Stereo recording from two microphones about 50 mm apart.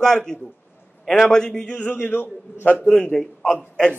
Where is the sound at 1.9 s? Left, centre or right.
Left.